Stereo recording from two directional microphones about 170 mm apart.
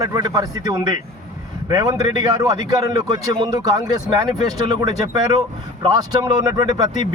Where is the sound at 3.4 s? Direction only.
25° right (ahead or behind).